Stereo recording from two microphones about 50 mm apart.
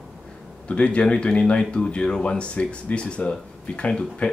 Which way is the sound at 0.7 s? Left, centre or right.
Left.